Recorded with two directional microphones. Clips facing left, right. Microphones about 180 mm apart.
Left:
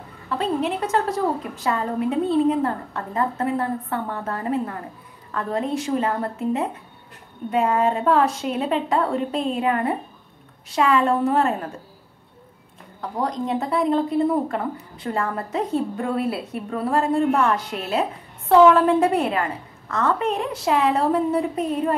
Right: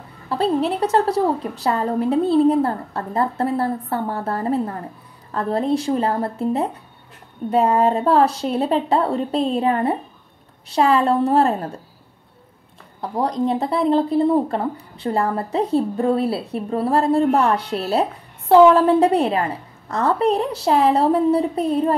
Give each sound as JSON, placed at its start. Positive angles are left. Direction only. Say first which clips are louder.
{"t": 0.3, "sound": "speech", "louder": "right 4 dB", "side_deg": -35}
{"t": 13.0, "sound": "speech", "louder": "right 4 dB", "side_deg": -35}